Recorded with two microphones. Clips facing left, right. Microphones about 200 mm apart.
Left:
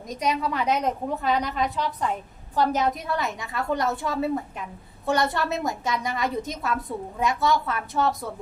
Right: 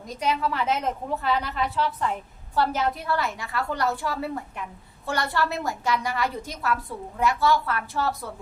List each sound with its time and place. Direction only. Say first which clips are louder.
0.2 s a woman's voice: even; 15° left (ahead or behind)